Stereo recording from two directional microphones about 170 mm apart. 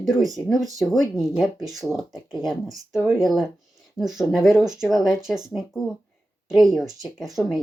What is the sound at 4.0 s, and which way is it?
Speech, 25° left (ahead or behind).